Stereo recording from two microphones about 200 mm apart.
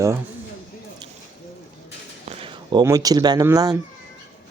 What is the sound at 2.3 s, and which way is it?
Speech, 25° right (ahead or behind).